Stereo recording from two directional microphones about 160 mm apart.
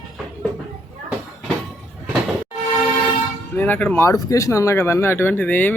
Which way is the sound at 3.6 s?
10° left (ahead or behind).